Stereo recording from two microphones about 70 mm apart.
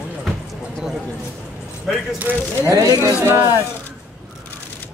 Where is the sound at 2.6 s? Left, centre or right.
Right.